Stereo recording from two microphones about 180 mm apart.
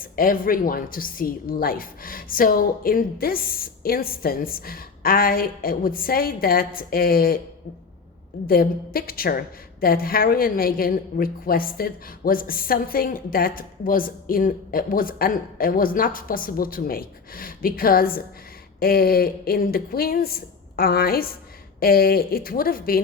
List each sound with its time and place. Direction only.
0.0 s a woman's voice: 50° left (ahead or behind)
8.4 s a woman's voice: 55° left (ahead or behind)